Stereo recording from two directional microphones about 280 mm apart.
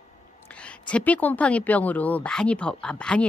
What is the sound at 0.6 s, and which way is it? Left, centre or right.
A woman's voice, centre.